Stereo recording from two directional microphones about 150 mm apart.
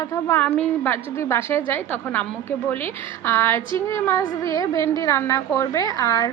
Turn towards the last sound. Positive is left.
turn(degrees=20)  # may be behind; listen again after turning